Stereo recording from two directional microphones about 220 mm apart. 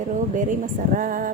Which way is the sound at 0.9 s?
40° right (ahead or behind).